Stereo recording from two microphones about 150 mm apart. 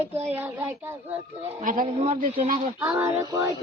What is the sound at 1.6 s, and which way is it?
Speech, 65° right (ahead or behind).